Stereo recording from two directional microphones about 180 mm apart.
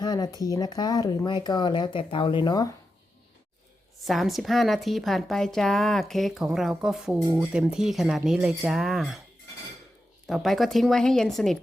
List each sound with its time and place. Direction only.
0.0 s a sound: 20° left (ahead or behind)
0.3 s speech: 20° left (ahead or behind)
4.0 s a woman's voice: centre (ahead or behind)
7.2 s speech: 15° right (ahead or behind)
7.5 s a woman's voice: 5° right (ahead or behind)
10.2 s a woman's voice: centre (ahead or behind)